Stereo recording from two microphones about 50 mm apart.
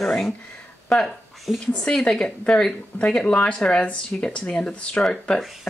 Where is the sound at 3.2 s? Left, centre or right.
Left.